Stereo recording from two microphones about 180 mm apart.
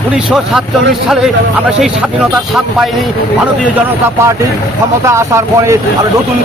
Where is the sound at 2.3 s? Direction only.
5° right (ahead or behind).